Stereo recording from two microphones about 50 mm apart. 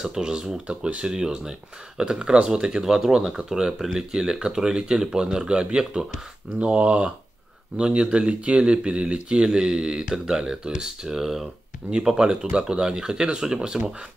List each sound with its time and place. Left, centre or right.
0.0 s speech: centre